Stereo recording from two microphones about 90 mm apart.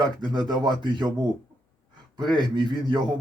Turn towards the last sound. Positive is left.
turn(degrees=-55)  # may be behind; listen again after turning